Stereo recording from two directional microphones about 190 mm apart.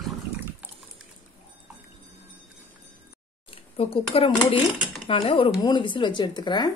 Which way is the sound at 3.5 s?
30° left (ahead or behind).